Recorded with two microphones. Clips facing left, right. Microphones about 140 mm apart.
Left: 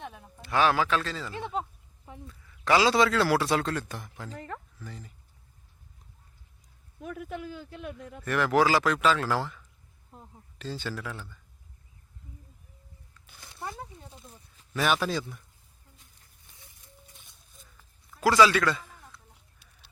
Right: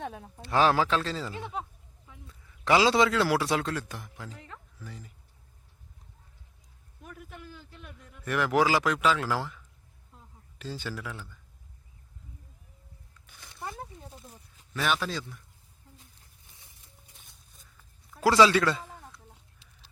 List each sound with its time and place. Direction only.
0.2 s a man's voice: 35° right (ahead or behind)
2.6 s a man's voice: 20° right (ahead or behind); by 4.4 s 5° right (ahead or behind)
4.4 s speech: 55° left (ahead or behind)
4.8 s a man's voice: 5° right (ahead or behind)
7.0 s speech: 55° left (ahead or behind)
8.2 s a man's voice: 10° right (ahead or behind)
10.6 s a man's voice: 10° right (ahead or behind)
13.4 s a sound: centre (ahead or behind)
18.2 s a sound: 25° right (ahead or behind)